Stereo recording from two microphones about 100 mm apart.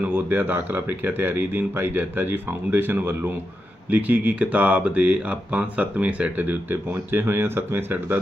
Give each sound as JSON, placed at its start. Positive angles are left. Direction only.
{"t": 0.0, "sound": "speech", "side_deg": -20}